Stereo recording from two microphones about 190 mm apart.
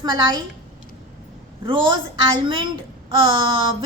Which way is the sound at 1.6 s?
25° right (ahead or behind).